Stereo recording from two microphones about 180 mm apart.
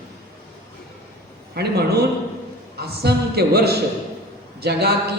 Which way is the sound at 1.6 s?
60° right (ahead or behind).